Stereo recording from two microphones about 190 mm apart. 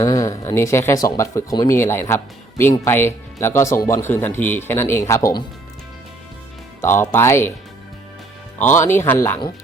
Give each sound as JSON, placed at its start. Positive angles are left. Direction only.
{"t": 0.0, "sound": "speech", "side_deg": 15}
{"t": 6.8, "sound": "speech", "side_deg": 10}
{"t": 8.8, "sound": "speech", "side_deg": 10}